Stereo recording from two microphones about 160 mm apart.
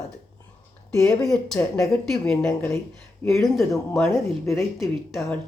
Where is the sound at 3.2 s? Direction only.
Centre (ahead or behind).